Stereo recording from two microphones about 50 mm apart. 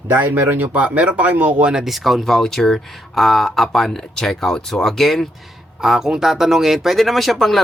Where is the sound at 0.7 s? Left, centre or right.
Right.